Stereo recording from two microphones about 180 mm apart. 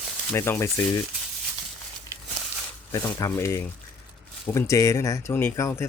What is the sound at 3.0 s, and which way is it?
Speech, 15° left (ahead or behind).